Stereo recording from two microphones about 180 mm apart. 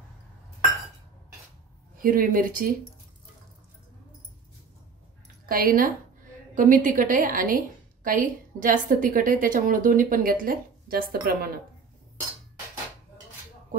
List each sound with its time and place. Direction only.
2.0 s a woman's voice: 50° right (ahead or behind)
5.5 s a woman's voice: 55° right (ahead or behind)